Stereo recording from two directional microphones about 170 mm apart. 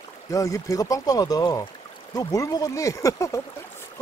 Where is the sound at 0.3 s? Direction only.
20° left (ahead or behind).